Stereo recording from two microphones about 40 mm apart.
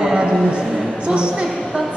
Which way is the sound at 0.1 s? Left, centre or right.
Right.